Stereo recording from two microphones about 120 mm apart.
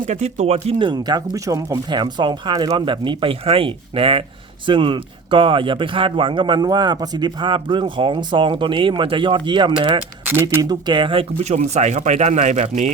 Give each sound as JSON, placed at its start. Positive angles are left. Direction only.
{"t": 0.1, "sound": "speech", "side_deg": -70}
{"t": 0.8, "sound": "speech", "side_deg": -40}